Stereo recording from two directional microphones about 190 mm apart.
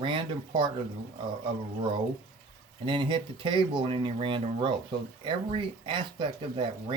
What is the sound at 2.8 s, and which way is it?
Speech, 25° right (ahead or behind).